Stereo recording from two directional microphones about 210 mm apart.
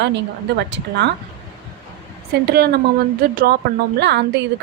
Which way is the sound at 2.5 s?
50° right (ahead or behind).